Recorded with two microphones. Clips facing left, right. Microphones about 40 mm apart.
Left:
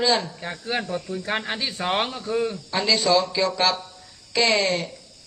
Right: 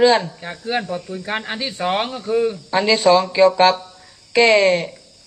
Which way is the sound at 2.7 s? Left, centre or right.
Right.